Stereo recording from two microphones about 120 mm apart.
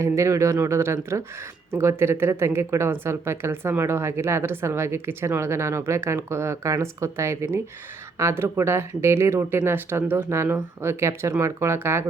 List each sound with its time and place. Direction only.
0.0 s speech: 25° right (ahead or behind)